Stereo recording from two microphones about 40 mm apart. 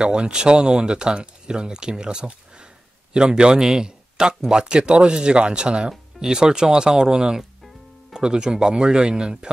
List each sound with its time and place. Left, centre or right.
0.0 s speech: right